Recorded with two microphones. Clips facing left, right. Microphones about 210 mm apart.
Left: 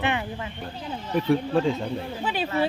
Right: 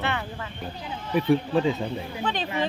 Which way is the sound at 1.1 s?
Centre (ahead or behind).